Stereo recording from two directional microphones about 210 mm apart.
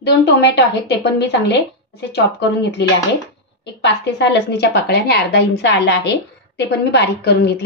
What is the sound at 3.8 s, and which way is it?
A woman's voice, 55° left (ahead or behind).